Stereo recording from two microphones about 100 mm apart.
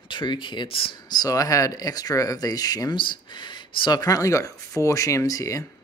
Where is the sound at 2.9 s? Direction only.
55° left (ahead or behind).